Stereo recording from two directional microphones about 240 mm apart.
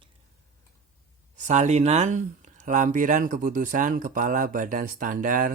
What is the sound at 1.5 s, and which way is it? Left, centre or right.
Speech, right.